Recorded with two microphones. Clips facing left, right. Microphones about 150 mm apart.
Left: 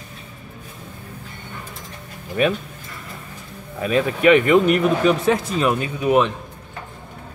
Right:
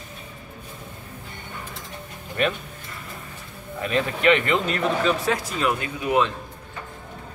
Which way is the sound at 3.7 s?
10° left (ahead or behind).